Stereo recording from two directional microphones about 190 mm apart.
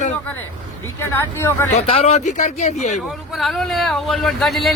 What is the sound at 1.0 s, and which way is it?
Speech, 15° left (ahead or behind).